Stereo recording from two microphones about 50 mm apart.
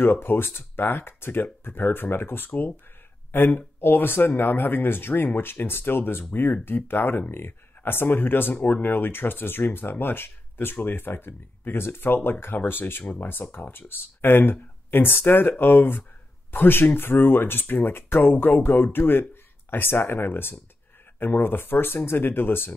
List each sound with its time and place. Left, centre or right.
0.0 s speech: left
13.0 s speech: left